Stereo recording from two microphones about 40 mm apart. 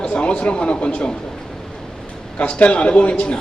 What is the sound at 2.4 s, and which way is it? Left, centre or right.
A man's voice, left.